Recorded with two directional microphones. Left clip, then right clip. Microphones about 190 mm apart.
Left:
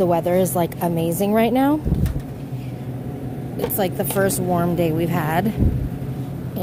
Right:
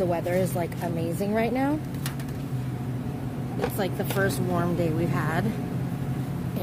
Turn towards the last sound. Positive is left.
turn(degrees=30)  # may be behind; listen again after turning